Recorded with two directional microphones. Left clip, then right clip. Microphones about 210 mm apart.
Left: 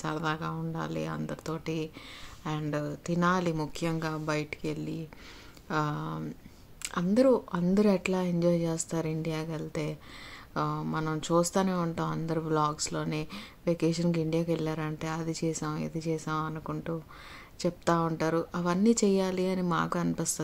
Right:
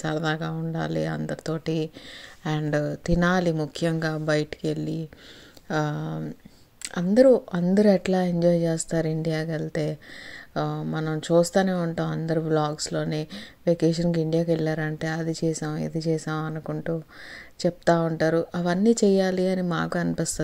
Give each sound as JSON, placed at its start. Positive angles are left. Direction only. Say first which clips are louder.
{"t": 0.0, "sound": "speech", "louder": "right 5 dB", "side_deg": -15}